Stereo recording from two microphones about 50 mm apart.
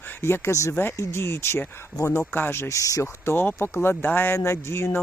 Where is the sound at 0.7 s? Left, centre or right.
Left.